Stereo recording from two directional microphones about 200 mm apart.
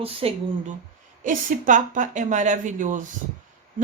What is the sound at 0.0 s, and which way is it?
Speech, 30° right (ahead or behind).